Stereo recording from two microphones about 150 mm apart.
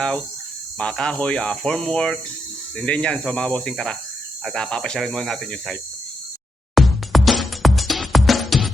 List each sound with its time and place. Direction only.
0.8 s speech: 5° left (ahead or behind)
6.7 s music: centre (ahead or behind)